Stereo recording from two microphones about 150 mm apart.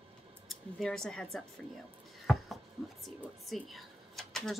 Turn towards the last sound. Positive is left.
turn(degrees=5)  # may be behind; listen again after turning